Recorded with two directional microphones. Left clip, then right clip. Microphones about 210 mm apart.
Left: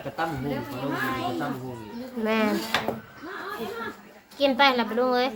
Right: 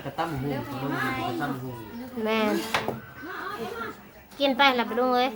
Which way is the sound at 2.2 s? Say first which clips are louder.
Even; 5° right (ahead or behind).